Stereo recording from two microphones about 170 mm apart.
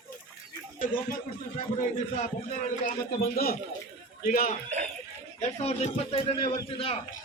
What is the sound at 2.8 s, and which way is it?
A man's voice, 60° left (ahead or behind).